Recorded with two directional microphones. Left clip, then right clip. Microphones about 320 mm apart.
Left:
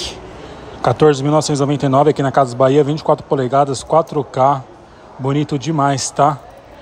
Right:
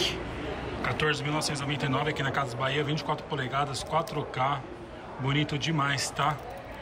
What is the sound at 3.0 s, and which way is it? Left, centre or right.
Speech, centre.